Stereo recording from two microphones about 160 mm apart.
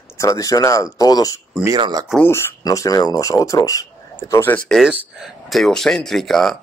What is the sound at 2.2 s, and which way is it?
Speech, 15° left (ahead or behind).